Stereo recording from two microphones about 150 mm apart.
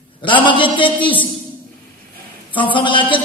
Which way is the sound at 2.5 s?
35° left (ahead or behind).